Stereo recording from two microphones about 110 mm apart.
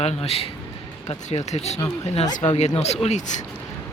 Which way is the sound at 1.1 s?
90° left.